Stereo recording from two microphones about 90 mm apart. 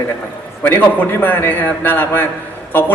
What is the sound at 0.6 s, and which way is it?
A man's voice, 20° left (ahead or behind).